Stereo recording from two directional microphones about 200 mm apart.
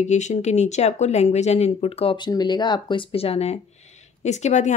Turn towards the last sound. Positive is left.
turn(degrees=35)  # may be behind; listen again after turning